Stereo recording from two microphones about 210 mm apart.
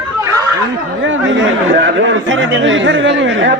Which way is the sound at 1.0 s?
60° right (ahead or behind).